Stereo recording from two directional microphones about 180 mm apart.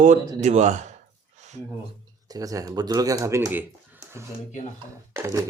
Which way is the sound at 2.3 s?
20° right (ahead or behind).